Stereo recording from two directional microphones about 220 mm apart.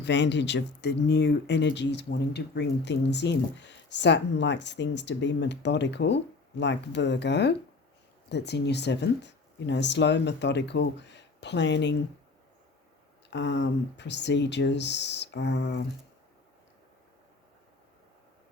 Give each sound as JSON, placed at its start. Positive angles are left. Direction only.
{"t": 0.0, "sound": "speech", "side_deg": 55}
{"t": 13.3, "sound": "speech", "side_deg": 55}